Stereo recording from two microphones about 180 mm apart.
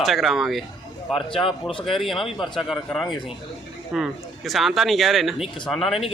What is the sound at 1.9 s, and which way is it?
A man's voice, centre (ahead or behind).